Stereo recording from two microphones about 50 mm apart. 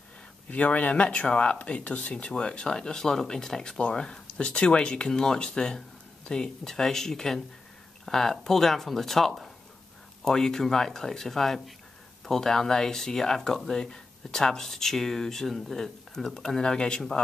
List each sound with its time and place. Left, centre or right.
0.5 s speech: left; by 17.2 s centre